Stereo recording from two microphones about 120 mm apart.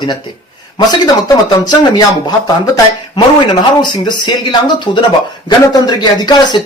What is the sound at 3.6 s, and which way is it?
Speech, 40° left (ahead or behind).